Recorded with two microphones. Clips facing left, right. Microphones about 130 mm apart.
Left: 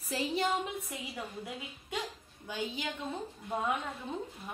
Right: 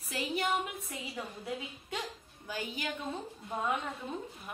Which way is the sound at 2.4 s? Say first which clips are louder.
Left 1 dB; 20° left (ahead or behind).